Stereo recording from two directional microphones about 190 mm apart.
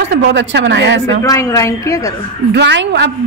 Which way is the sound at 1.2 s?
15° left (ahead or behind).